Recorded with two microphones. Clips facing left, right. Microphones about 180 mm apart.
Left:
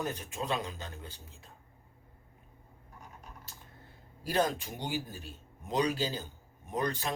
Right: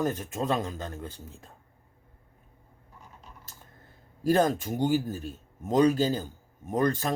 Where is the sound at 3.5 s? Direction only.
45° right (ahead or behind).